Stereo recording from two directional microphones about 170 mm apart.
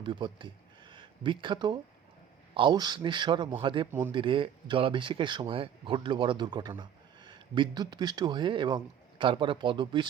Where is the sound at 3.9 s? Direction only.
15° right (ahead or behind).